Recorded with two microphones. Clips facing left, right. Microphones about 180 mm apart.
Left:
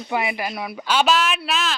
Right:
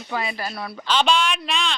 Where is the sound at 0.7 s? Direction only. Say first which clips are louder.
Left 1 dB; 10° left (ahead or behind).